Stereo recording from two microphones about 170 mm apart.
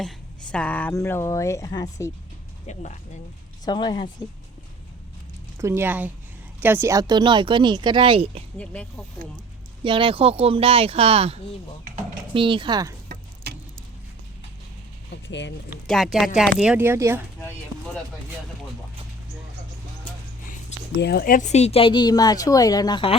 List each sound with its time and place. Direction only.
0.0 s speech: 5° left (ahead or behind); by 2.1 s 20° left (ahead or behind)
2.7 s speech: 45° left (ahead or behind)
3.7 s speech: 25° left (ahead or behind)
5.5 s speech: 15° right (ahead or behind); by 8.4 s 30° right (ahead or behind)
8.5 s speech: 5° left (ahead or behind)
9.8 s speech: 30° right (ahead or behind)
13.1 s a sound: 70° right (ahead or behind)
15.1 s speech: 90° left
15.9 s speech: centre (ahead or behind)
21.0 s speech: 65° left (ahead or behind); by 23.1 s 25° left (ahead or behind)